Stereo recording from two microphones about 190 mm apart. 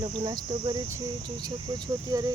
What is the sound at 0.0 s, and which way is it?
Speech, 20° right (ahead or behind).